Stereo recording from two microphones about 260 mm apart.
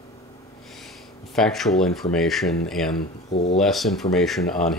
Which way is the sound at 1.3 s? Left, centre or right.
Centre.